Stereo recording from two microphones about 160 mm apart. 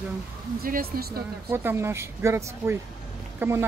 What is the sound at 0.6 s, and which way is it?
Speech, 65° right (ahead or behind).